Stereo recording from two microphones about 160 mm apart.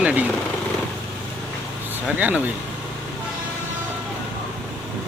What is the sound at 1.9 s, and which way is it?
Speech, 10° right (ahead or behind).